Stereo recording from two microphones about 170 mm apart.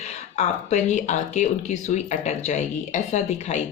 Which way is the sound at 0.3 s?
40° left (ahead or behind).